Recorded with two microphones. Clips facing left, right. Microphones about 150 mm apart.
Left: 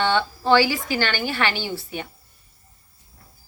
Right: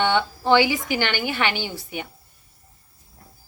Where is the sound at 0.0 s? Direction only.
15° right (ahead or behind).